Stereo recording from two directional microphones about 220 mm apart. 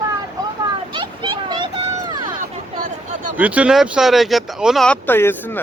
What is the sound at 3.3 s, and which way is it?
Speech, 5° right (ahead or behind).